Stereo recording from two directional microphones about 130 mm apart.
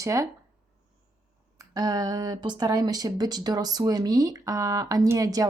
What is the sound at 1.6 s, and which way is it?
Speech, 30° right (ahead or behind).